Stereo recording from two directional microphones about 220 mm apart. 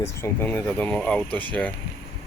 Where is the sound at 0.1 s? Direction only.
10° left (ahead or behind).